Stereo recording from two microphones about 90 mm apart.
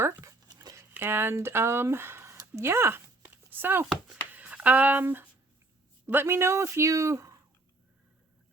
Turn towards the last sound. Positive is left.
turn(degrees=-35)  # may be behind; listen again after turning